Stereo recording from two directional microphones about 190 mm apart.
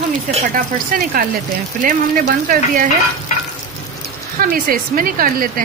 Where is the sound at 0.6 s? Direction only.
45° right (ahead or behind).